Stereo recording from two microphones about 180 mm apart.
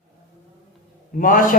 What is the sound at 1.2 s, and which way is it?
Speech, 45° left (ahead or behind).